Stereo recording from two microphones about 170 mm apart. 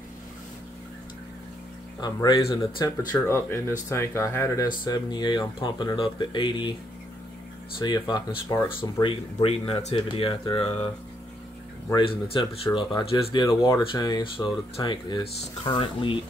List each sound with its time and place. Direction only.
2.0 s speech: 25° left (ahead or behind)
3.3 s speech: 15° left (ahead or behind)
7.8 s speech: 25° left (ahead or behind)
9.0 s speech: 35° left (ahead or behind)
11.9 s speech: 30° left (ahead or behind)